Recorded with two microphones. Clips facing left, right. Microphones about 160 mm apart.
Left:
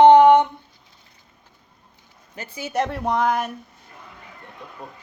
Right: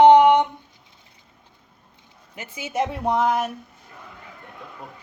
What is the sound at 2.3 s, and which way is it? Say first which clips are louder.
Speech: left 2 dB; 20° right (ahead or behind).